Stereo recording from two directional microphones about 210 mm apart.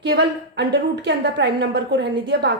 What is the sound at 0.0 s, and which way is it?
A woman's voice, 55° right (ahead or behind).